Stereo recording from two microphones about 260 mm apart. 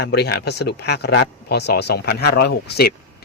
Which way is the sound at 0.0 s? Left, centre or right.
Left.